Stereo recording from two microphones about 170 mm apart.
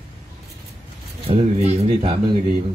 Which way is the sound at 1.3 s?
35° right (ahead or behind).